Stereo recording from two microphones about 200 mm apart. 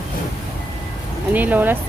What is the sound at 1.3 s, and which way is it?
Speech, 10° right (ahead or behind).